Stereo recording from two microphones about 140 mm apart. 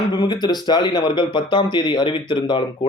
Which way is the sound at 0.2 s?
30° left (ahead or behind).